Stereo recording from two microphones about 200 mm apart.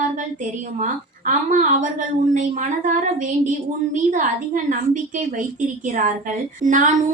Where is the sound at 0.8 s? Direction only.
40° right (ahead or behind).